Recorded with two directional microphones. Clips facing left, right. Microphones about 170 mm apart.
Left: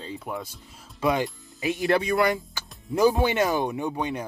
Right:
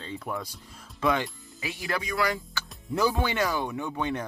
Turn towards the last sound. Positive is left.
turn(degrees=15)  # may be behind; listen again after turning